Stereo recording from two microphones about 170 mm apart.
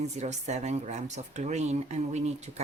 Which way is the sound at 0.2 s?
40° right (ahead or behind).